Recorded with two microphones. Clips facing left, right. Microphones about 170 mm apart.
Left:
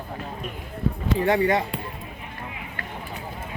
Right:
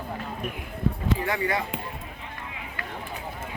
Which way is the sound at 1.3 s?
25° left (ahead or behind).